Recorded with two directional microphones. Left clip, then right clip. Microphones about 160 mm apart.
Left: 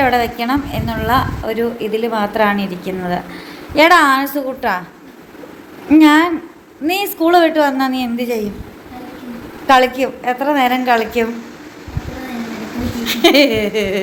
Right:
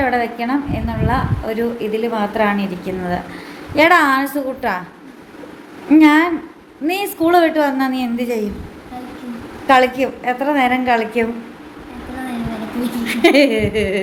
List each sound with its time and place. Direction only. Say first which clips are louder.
0.0 s a woman's voice: left 3 dB; centre (ahead or behind)
5.9 s a woman's voice: left 1 dB; 5° right (ahead or behind)
9.6 s a woman's voice: left 1 dB; 5° right (ahead or behind)
13.1 s a woman's voice: left 1 dB; 10° right (ahead or behind)